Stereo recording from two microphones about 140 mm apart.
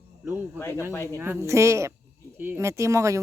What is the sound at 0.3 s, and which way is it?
A woman's voice, 15° right (ahead or behind).